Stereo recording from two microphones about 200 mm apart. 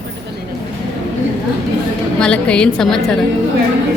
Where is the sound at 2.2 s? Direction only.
5° left (ahead or behind).